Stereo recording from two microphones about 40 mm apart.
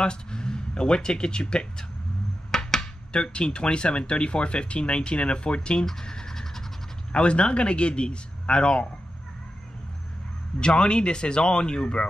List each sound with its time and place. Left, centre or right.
0.0 s speech: left
2.5 s a sound: centre
3.1 s speech: left
5.9 s scratch: centre
7.1 s speech: left
10.6 s speech: left